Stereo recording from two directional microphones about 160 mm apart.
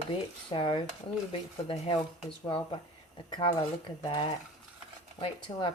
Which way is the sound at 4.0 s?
35° left (ahead or behind).